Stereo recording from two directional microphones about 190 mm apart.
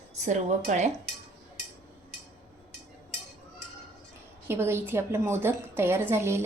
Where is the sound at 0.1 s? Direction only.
40° right (ahead or behind).